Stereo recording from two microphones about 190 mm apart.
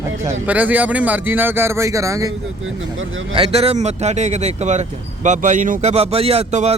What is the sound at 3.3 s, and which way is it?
Speech, 30° right (ahead or behind).